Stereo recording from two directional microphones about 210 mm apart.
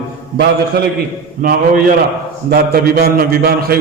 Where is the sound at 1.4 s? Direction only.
40° right (ahead or behind).